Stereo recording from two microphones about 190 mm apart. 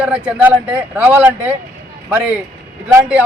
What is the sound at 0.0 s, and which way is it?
A man's voice, 5° right (ahead or behind).